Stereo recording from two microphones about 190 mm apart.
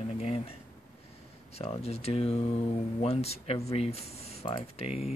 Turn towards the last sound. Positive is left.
turn(degrees=30)  # may be behind; listen again after turning